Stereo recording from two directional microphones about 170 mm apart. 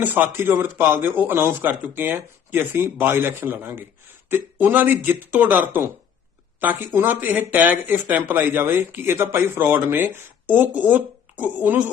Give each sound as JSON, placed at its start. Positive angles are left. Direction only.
{"t": 0.0, "sound": "speech", "side_deg": -10}